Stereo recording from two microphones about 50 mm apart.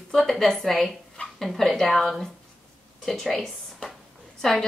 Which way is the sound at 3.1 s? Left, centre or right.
Centre.